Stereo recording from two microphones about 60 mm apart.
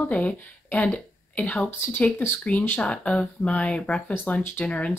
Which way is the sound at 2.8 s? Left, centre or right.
Centre.